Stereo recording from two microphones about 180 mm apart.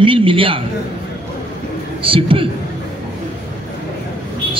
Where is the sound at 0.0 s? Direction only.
30° right (ahead or behind).